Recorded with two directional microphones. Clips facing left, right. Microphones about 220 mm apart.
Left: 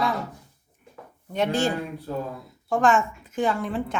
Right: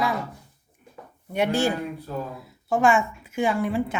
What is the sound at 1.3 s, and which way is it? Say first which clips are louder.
Speech: right 1 dB; 10° right (ahead or behind).